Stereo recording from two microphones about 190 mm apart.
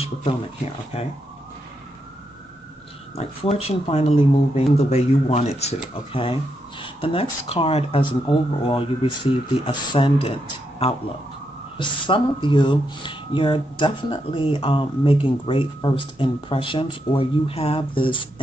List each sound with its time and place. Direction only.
0.0 s speech: 30° left (ahead or behind)
3.2 s speech: 35° left (ahead or behind)
6.8 s speech: 30° left (ahead or behind)
11.8 s speech: 25° left (ahead or behind)